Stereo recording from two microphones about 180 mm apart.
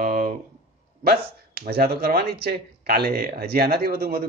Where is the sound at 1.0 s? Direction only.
55° right (ahead or behind).